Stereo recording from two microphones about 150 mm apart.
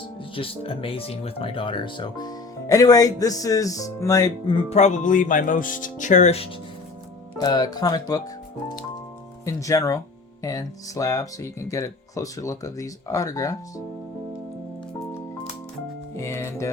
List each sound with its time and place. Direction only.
0.3 s speech: 40° left (ahead or behind)
4.7 s speech: 50° left (ahead or behind)
7.3 s speech: 25° left (ahead or behind)
9.4 s speech: 20° left (ahead or behind)
16.1 s speech: 20° left (ahead or behind)